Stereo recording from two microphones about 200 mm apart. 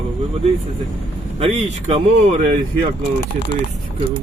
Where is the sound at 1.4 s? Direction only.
35° right (ahead or behind).